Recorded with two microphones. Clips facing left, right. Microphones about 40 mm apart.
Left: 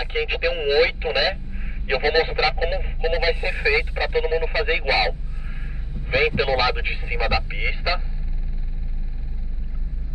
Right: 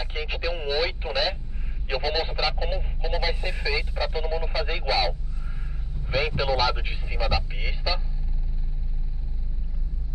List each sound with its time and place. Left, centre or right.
0.0 s speech: left